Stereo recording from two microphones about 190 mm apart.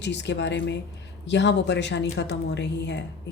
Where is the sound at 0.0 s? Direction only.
65° left (ahead or behind).